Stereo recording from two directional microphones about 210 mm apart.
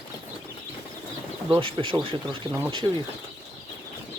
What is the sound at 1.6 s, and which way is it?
Speech, 25° right (ahead or behind).